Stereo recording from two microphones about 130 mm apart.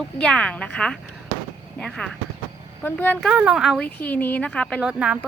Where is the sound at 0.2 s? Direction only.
10° left (ahead or behind).